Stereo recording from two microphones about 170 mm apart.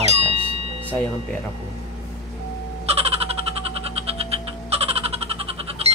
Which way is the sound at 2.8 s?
35° right (ahead or behind).